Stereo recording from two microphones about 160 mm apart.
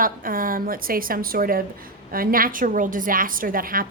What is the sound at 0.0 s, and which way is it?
A woman's voice, 60° right (ahead or behind).